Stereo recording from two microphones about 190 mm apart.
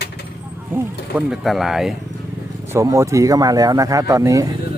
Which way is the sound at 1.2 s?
Centre (ahead or behind).